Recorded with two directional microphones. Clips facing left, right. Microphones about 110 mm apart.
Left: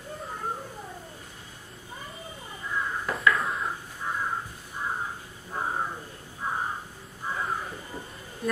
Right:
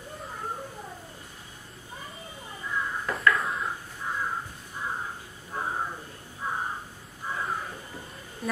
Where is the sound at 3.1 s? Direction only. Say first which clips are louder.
Even; centre (ahead or behind).